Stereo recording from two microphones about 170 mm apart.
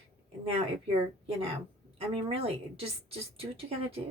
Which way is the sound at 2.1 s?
35° right (ahead or behind).